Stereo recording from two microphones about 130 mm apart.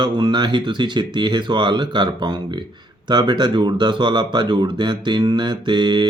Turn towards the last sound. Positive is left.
turn(degrees=-35)  # may be behind; listen again after turning